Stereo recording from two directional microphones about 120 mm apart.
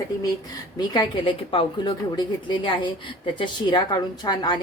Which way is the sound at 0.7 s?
35° left (ahead or behind).